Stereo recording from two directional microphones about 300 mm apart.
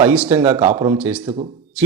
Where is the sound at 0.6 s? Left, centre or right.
Right.